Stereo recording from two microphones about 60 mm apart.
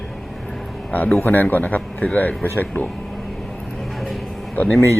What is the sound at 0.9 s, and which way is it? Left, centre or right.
A man's voice, left.